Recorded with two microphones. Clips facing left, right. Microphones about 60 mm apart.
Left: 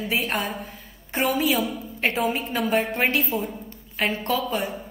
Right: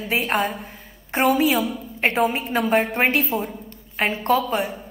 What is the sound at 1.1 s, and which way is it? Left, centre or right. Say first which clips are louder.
Speech: right 5 dB; right.